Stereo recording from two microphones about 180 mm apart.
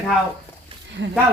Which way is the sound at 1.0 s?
75° right (ahead or behind).